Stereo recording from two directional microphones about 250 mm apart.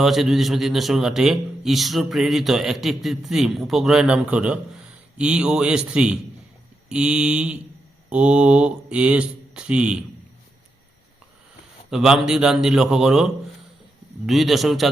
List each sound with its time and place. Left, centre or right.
0.0 s a man's voice: centre
11.9 s a man's voice: centre